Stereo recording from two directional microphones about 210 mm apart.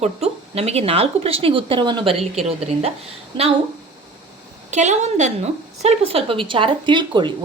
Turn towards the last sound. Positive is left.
turn(degrees=-20)  # may be behind; listen again after turning